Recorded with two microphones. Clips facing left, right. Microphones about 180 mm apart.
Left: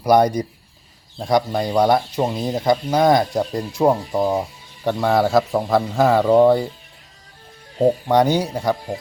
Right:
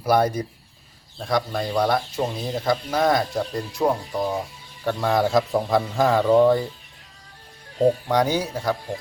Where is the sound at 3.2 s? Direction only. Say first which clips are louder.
Left 4 dB; 20° left (ahead or behind).